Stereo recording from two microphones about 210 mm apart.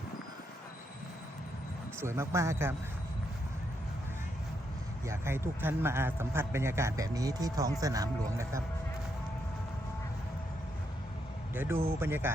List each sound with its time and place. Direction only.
2.0 s a man's voice: 10° right (ahead or behind)
5.0 s a man's voice: 10° right (ahead or behind)
11.5 s a man's voice: 10° right (ahead or behind)